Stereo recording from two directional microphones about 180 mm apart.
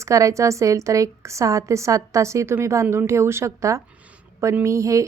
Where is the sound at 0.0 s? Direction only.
15° right (ahead or behind).